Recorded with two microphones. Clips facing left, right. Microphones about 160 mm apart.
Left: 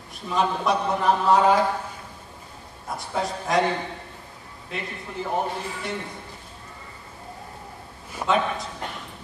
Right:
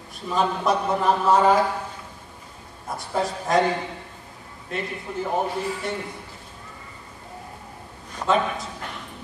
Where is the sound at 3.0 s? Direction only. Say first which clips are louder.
Right 2 dB; centre (ahead or behind).